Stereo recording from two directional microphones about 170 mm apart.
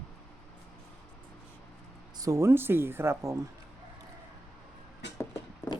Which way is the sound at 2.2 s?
15° right (ahead or behind).